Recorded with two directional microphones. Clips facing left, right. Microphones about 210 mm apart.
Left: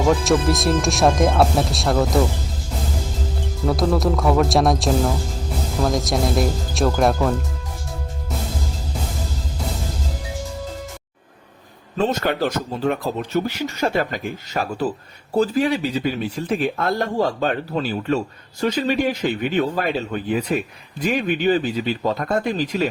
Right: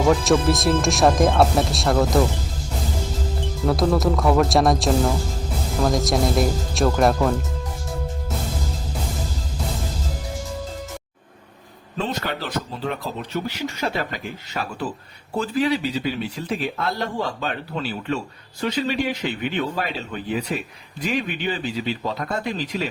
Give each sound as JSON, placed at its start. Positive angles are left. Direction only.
{"t": 0.0, "sound": "speech", "side_deg": 0}
{"t": 3.7, "sound": "speech", "side_deg": 0}
{"t": 11.9, "sound": "speech", "side_deg": 45}